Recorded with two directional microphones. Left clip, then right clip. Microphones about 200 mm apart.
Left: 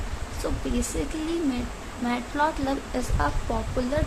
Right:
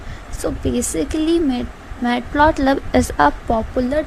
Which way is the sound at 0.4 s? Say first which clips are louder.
Right 8 dB; 35° right (ahead or behind).